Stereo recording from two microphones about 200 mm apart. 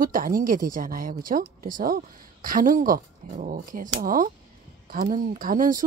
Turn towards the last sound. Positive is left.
turn(degrees=-45)  # may be behind; listen again after turning